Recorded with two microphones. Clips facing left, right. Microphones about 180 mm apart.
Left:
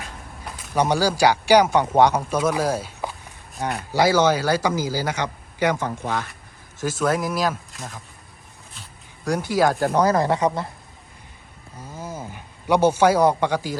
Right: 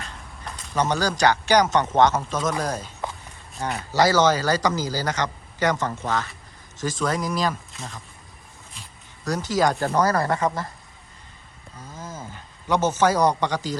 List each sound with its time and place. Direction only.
0.0 s speech: 10° left (ahead or behind)
9.2 s speech: 10° left (ahead or behind)
9.9 s speech: 15° left (ahead or behind)
11.8 s speech: 10° left (ahead or behind)